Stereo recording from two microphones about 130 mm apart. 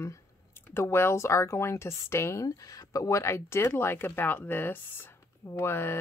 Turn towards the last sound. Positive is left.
turn(degrees=20)  # may be behind; listen again after turning